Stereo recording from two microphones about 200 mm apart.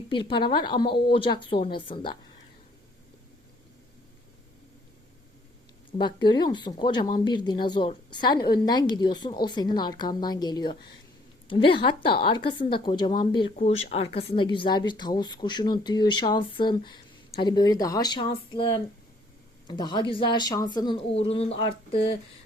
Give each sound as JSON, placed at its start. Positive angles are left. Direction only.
{"t": 0.1, "sound": "a woman's voice", "side_deg": 25}
{"t": 6.0, "sound": "a woman's voice", "side_deg": 20}